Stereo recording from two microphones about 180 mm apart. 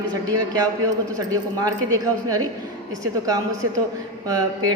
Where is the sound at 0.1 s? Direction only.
20° right (ahead or behind).